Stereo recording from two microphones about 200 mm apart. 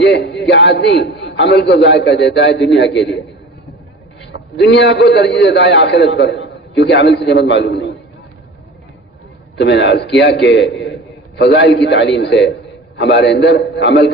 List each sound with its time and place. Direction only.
0.0 s a man's voice: 60° left (ahead or behind)
4.3 s a man's voice: 60° left (ahead or behind)
9.6 s a man's voice: 60° left (ahead or behind)